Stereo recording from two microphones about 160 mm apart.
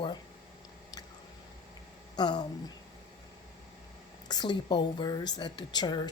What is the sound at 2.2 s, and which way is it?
Speech, 25° left (ahead or behind).